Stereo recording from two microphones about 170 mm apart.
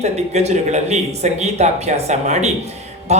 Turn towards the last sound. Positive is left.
turn(degrees=-40)  # may be behind; listen again after turning